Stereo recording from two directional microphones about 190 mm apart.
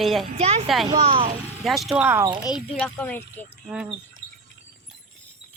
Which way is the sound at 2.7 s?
10° left (ahead or behind).